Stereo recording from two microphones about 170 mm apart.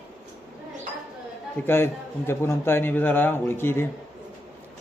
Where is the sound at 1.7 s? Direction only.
15° left (ahead or behind).